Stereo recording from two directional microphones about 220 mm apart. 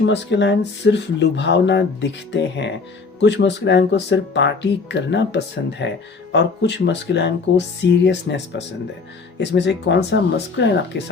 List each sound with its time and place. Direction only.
0.0 s speech: 50° left (ahead or behind)